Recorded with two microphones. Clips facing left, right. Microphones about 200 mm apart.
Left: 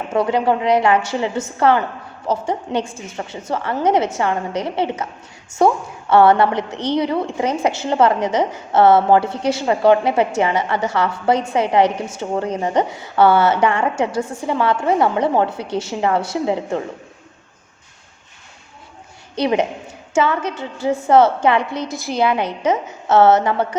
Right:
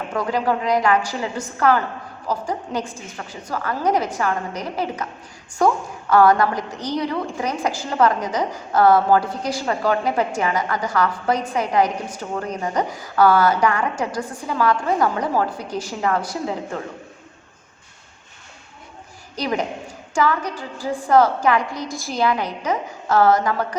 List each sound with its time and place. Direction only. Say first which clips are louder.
0.1 s a woman's voice: left 5 dB; 25° left (ahead or behind)
19.4 s a woman's voice: left 6 dB; 25° left (ahead or behind)